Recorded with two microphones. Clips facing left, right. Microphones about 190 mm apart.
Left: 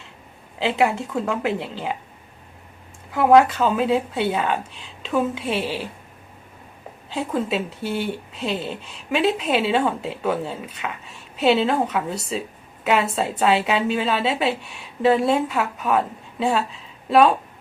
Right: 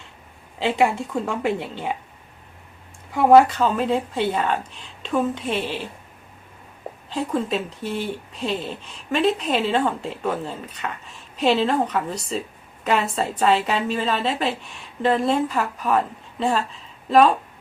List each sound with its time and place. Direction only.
0.6 s speech: centre (ahead or behind)
3.1 s a woman's voice: centre (ahead or behind)
7.1 s speech: 5° left (ahead or behind)